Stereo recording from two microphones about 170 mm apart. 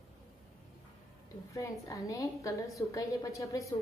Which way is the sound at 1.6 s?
20° left (ahead or behind).